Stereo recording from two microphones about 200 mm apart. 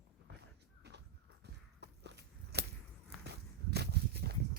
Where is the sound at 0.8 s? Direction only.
55° right (ahead or behind).